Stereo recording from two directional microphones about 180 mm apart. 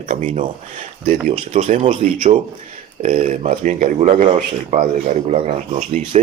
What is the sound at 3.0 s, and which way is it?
Speech, 45° right (ahead or behind).